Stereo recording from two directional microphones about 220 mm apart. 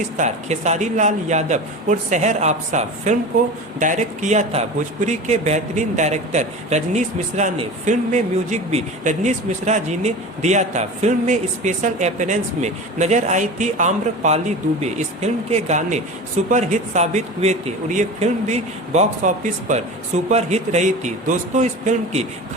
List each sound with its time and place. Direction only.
0.2 s speech: 30° right (ahead or behind)